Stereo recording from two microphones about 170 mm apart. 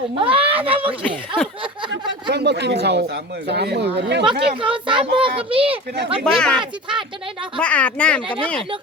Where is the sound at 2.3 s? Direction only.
80° right.